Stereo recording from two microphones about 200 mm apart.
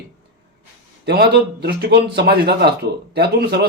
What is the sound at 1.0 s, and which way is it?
A man's voice, 50° right (ahead or behind).